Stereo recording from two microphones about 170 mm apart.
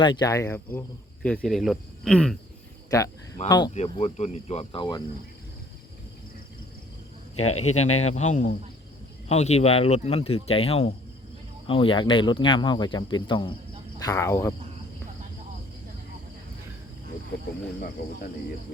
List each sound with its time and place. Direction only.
0.0 s speech: 25° left (ahead or behind); by 2.4 s 5° left (ahead or behind)
2.9 s speech: 20° left (ahead or behind)
3.8 s speech: 40° left (ahead or behind)
7.3 s speech: 40° left (ahead or behind)
14.0 s speech: 15° left (ahead or behind)